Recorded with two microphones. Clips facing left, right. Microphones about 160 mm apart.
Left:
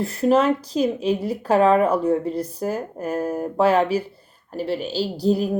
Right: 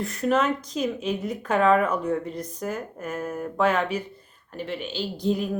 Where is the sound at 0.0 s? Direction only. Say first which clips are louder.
Left 5 dB; 30° left (ahead or behind).